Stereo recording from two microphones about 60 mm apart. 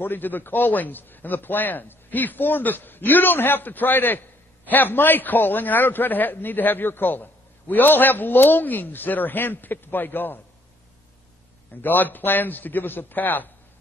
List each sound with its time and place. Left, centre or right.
0.0 s a man's voice: left
11.7 s a man's voice: left